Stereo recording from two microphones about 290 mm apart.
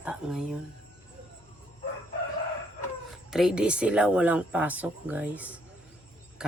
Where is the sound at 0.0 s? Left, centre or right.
Centre.